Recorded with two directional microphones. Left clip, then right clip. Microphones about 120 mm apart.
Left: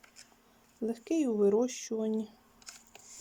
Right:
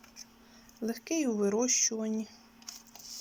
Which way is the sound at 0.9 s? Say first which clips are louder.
Left 1 dB; 30° left (ahead or behind).